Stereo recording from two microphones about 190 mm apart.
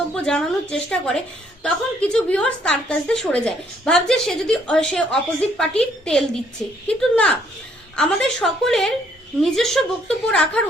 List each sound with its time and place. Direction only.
0.1 s a woman's voice: 5° left (ahead or behind)